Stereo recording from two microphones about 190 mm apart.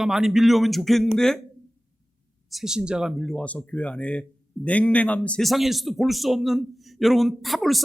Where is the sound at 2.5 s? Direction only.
Centre (ahead or behind).